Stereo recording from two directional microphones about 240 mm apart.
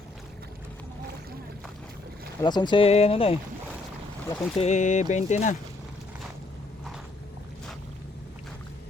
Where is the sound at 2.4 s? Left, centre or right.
Centre.